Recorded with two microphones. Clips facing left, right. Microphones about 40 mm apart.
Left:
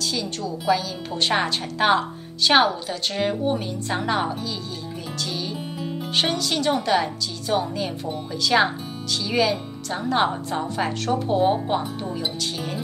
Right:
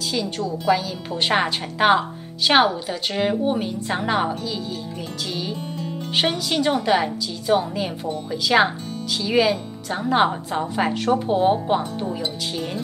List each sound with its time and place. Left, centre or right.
0.0 s a woman's voice: centre